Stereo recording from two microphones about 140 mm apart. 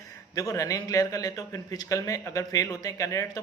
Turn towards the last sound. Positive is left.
turn(degrees=25)  # may be behind; listen again after turning